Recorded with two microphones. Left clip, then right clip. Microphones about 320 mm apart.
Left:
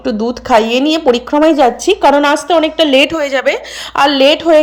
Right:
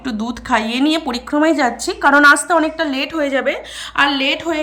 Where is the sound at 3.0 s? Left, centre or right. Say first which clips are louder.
Left 6 dB; centre.